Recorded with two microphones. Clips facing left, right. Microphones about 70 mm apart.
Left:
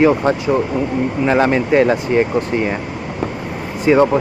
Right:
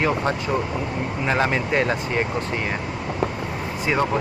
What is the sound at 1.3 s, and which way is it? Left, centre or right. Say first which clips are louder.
Speech: left 7 dB; left.